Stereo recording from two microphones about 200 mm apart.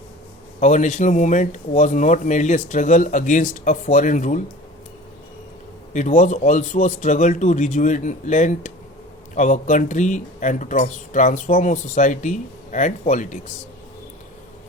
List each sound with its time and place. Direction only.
0.6 s speech: 35° left (ahead or behind)
5.9 s speech: 40° left (ahead or behind)